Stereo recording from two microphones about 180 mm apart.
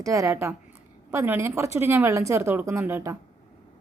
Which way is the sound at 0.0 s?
15° right (ahead or behind).